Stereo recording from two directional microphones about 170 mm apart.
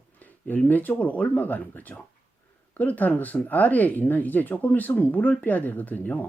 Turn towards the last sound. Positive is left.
turn(degrees=10)  # may be behind; listen again after turning